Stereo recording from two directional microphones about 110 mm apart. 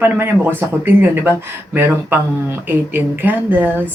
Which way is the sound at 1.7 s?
20° right (ahead or behind).